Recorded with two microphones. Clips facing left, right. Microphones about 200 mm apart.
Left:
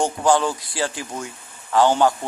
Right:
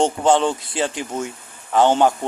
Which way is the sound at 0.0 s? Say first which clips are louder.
Right 2 dB; 25° right (ahead or behind).